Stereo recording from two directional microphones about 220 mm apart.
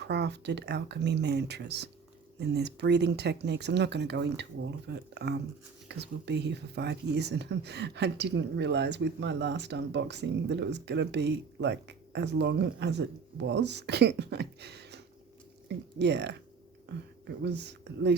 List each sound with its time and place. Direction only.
0.0 s speech: 50° right (ahead or behind)